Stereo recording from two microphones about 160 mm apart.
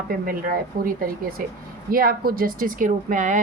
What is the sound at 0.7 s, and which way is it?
Speech, 65° right (ahead or behind).